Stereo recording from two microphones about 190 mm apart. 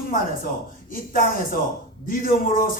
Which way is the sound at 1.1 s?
45° left (ahead or behind).